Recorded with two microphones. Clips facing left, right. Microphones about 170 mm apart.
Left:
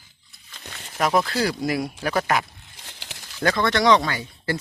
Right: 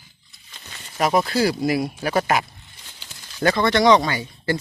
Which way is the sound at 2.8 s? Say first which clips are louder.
Left 5 dB; 80° left.